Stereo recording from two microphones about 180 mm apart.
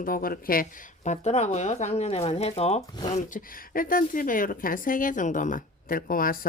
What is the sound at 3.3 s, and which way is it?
Speech, 50° left (ahead or behind).